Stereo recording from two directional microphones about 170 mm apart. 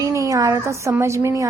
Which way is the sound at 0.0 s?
20° right (ahead or behind).